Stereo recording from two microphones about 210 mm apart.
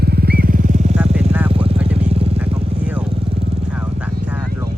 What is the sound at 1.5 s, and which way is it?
Vehicle, 25° right (ahead or behind).